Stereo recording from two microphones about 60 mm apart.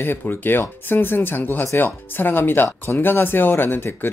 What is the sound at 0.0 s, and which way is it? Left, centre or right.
Speech, left.